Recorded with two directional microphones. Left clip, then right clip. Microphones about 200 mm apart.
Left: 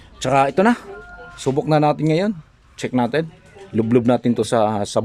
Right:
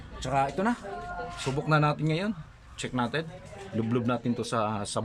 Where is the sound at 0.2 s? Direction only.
55° left (ahead or behind).